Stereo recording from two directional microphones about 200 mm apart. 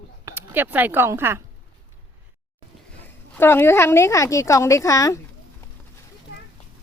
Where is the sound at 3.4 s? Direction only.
10° left (ahead or behind).